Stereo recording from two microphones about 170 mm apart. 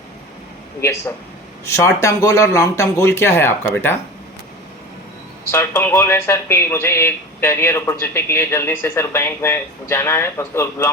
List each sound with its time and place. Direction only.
1.6 s speech: 15° left (ahead or behind)
5.5 s speech: 15° left (ahead or behind)